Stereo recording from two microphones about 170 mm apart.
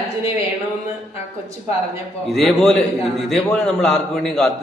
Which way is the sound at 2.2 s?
Centre (ahead or behind).